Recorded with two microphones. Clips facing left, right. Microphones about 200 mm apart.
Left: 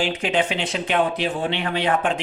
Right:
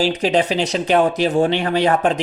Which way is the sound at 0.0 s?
40° right (ahead or behind).